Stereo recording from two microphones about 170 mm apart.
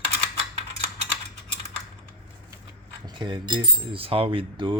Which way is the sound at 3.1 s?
25° right (ahead or behind).